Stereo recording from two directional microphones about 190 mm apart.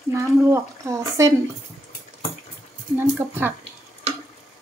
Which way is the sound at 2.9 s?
10° right (ahead or behind).